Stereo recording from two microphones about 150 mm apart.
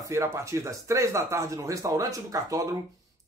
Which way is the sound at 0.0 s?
20° right (ahead or behind).